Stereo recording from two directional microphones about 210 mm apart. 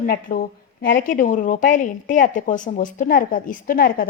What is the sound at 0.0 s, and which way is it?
A woman's voice, 40° left (ahead or behind).